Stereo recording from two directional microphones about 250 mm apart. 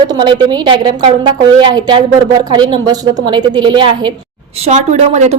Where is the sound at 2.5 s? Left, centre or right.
Centre.